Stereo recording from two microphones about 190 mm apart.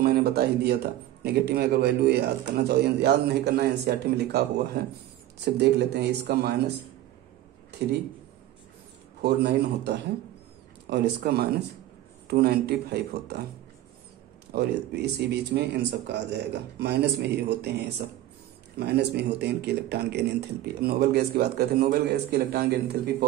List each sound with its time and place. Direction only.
0.0 s speech: 55° right (ahead or behind)
9.2 s speech: 60° right (ahead or behind)
14.5 s speech: 60° right (ahead or behind)